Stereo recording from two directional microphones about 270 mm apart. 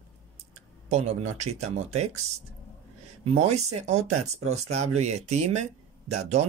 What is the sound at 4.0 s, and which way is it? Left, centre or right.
Speech, right.